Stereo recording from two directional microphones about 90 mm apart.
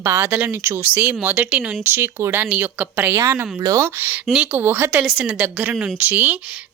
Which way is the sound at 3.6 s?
40° right (ahead or behind).